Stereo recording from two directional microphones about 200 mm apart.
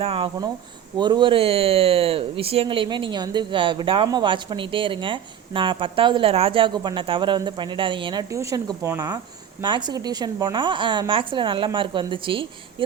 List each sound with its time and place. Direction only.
0.0 s speech: 25° right (ahead or behind)